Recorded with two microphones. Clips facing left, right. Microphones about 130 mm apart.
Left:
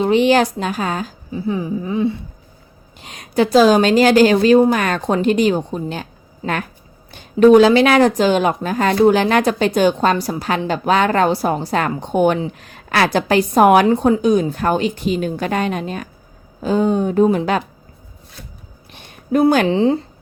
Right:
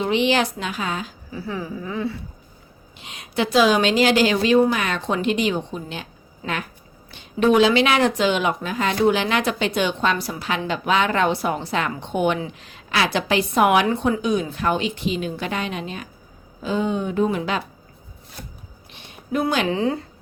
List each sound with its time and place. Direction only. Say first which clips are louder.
0.0 s a woman's voice: left 6 dB; 45° left (ahead or behind)
1.3 s speech: left 8 dB; 20° left (ahead or behind)
3.0 s a woman's voice: left 7 dB; 45° left (ahead or behind)
18.9 s a sound: left 8 dB; 45° left (ahead or behind)
19.6 s speech: left 7 dB; 30° left (ahead or behind)